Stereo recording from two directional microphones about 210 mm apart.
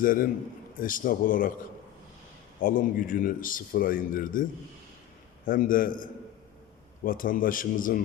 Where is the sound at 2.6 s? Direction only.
40° left (ahead or behind).